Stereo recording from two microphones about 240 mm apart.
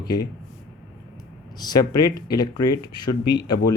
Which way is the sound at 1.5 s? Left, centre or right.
Centre.